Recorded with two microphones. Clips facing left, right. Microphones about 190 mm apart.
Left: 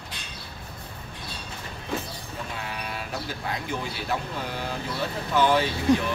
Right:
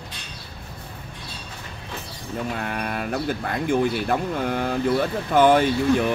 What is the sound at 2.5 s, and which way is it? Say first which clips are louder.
Speech: right 7 dB; 55° right (ahead or behind).